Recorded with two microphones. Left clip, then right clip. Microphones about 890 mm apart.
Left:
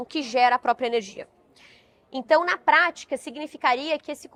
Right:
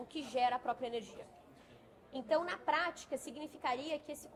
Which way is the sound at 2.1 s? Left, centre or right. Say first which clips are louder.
Left 14 dB; left.